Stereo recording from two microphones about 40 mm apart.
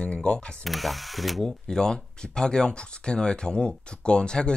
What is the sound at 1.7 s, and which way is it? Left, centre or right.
Speech, centre.